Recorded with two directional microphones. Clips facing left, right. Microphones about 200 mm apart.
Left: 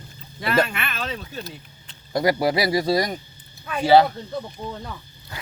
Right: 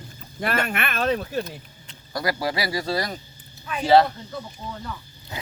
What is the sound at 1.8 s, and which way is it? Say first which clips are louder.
A man's voice: left 6 dB; 25° left (ahead or behind).